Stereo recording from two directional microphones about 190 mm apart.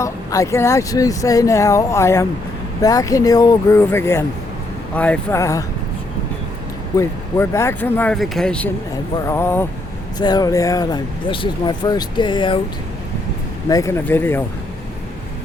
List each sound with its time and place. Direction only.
0.0 s speech: 15° left (ahead or behind)
6.9 s speech: 15° left (ahead or behind)
13.7 s speech: 15° left (ahead or behind)